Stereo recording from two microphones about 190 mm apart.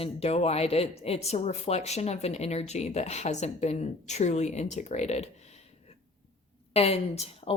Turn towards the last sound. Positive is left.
turn(degrees=35)  # may be behind; listen again after turning